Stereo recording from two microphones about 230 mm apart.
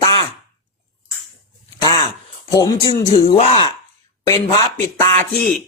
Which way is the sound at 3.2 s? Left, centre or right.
Left.